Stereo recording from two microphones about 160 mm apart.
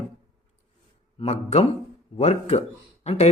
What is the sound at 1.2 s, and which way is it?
Speech, 45° left (ahead or behind).